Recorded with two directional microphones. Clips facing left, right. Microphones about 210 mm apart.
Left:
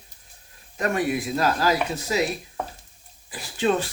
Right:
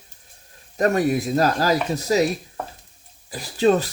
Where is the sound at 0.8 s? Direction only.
40° right (ahead or behind).